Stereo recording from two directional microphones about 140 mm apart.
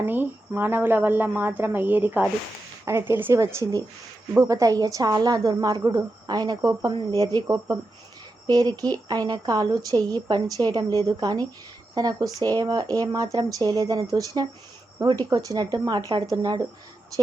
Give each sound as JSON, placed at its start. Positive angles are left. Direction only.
{"t": 0.0, "sound": "a woman's voice", "side_deg": -15}